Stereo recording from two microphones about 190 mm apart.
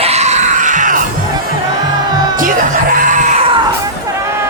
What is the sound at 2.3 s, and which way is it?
Music, 45° right (ahead or behind).